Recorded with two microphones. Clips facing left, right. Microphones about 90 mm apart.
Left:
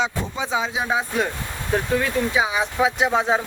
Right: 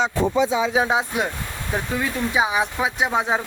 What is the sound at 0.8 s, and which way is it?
Speech, 20° right (ahead or behind).